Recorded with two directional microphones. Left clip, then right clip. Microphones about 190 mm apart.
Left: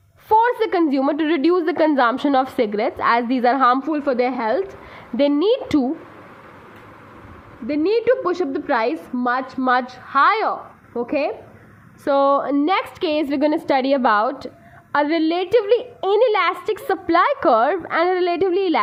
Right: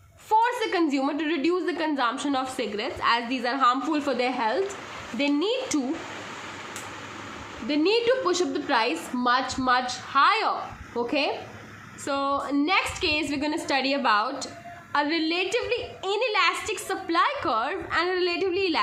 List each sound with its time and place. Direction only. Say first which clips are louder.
0.3 s a woman's voice: left 6 dB; 45° left (ahead or behind)
3.9 s a woman's voice: left 6 dB; 40° left (ahead or behind)
7.7 s a woman's voice: left 5 dB; 40° left (ahead or behind)